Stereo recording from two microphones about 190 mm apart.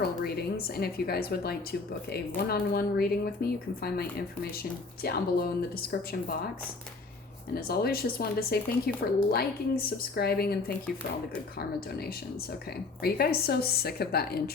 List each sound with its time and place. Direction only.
0.2 s a woman's voice: 55° left (ahead or behind)
5.0 s speech: 50° left (ahead or behind)
7.5 s speech: 55° left (ahead or behind)
13.0 s a woman's voice: 55° left (ahead or behind)